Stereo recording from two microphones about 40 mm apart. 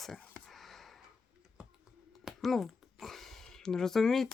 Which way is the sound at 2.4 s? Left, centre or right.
Centre.